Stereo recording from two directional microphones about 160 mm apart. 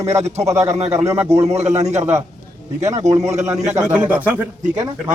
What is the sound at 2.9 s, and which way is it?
Speech, 20° right (ahead or behind).